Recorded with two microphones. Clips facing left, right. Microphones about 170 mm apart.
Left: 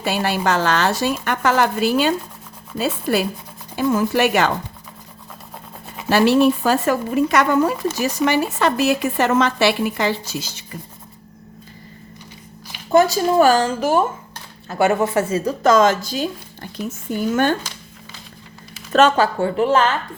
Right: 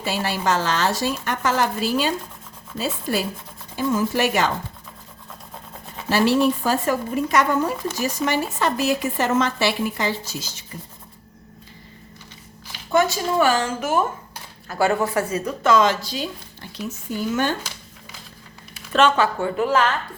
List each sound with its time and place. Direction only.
0.0 s a woman's voice: 65° left (ahead or behind)
6.1 s speech: 65° left (ahead or behind)
13.0 s speech: 35° left (ahead or behind)
14.7 s speech: 20° left (ahead or behind)
15.6 s a woman's voice: 45° left (ahead or behind)
18.9 s speech: 40° left (ahead or behind)